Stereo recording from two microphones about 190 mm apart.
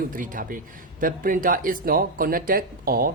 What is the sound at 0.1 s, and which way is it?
A man's voice, 45° right (ahead or behind).